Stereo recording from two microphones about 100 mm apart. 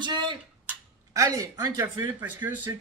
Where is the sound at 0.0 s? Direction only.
50° right (ahead or behind).